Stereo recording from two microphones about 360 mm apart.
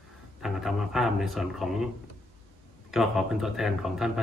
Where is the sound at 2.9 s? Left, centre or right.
Centre.